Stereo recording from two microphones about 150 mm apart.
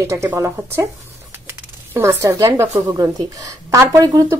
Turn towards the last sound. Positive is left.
turn(degrees=-20)  # may be behind; listen again after turning